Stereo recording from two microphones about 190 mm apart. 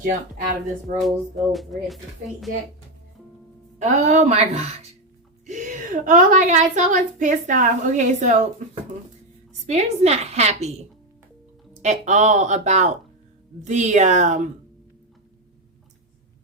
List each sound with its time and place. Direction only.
0.0 s speech: 45° right (ahead or behind)
1.0 s speech: centre (ahead or behind)
3.8 s a woman's voice: 35° right (ahead or behind)